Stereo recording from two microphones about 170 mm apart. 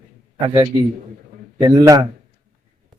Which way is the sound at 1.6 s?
25° right (ahead or behind).